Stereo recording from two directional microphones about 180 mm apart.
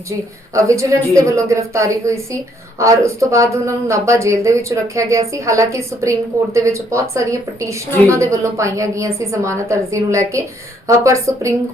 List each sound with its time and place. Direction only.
0.5 s a woman's voice: 15° right (ahead or behind)